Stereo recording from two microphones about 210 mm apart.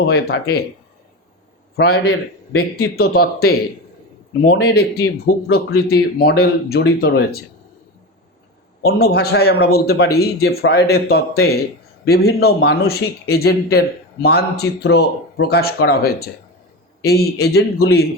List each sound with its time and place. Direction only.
0.1 s speech: 50° left (ahead or behind)
1.7 s a man's voice: 50° left (ahead or behind)
2.0 s a man's voice: 70° left (ahead or behind)
2.9 s speech: 50° left (ahead or behind)
8.8 s speech: 50° left (ahead or behind)